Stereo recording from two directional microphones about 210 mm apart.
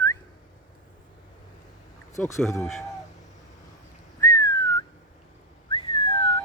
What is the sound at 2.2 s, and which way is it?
Speech, 10° left (ahead or behind).